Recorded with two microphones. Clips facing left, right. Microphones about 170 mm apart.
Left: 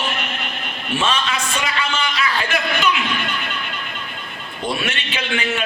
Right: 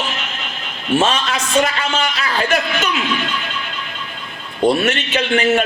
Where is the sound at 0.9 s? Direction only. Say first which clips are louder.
Right 4 dB; 45° right (ahead or behind).